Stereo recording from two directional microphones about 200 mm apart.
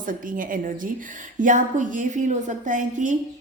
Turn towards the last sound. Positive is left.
turn(degrees=-40)  # may be behind; listen again after turning